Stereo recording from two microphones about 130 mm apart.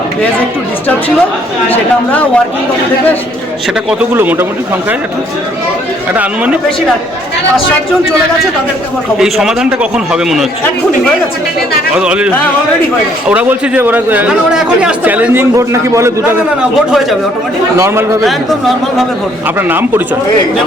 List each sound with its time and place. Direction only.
1.7 s speech: 10° left (ahead or behind)
4.1 s speech: 15° right (ahead or behind)
6.1 s speech: 10° right (ahead or behind)
9.1 s a man's voice: 5° right (ahead or behind)
11.9 s speech: 10° right (ahead or behind)
16.6 s a man's voice: centre (ahead or behind)
17.7 s a man's voice: 20° right (ahead or behind)
19.5 s speech: 15° right (ahead or behind)